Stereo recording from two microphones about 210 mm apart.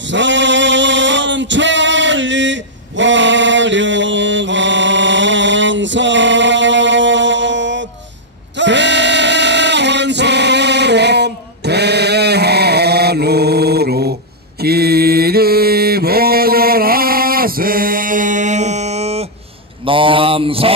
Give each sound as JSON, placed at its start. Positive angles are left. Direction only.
{"t": 0.1, "sound": "male singing", "side_deg": -60}
{"t": 8.5, "sound": "choir", "side_deg": -55}
{"t": 14.6, "sound": "mantra", "side_deg": -50}